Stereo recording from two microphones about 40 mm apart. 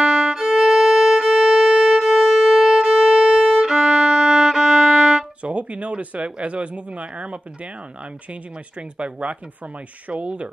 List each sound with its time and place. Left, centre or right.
0.0 s violin: centre
0.6 s music: centre
2.0 s music: centre
3.2 s violin: right
3.5 s violin: centre
5.4 s speech: right
8.9 s speech: right